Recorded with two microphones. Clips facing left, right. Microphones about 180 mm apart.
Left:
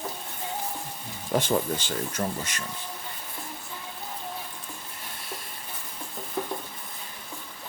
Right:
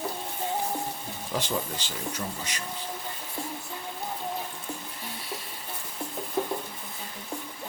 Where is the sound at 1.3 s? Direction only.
50° left (ahead or behind).